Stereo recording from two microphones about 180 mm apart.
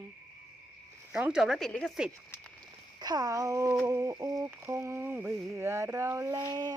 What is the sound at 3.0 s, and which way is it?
Speech, 20° right (ahead or behind).